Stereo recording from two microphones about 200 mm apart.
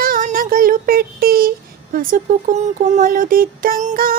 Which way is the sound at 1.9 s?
45° right (ahead or behind).